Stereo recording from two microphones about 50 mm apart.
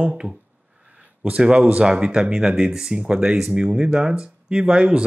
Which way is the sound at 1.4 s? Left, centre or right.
Right.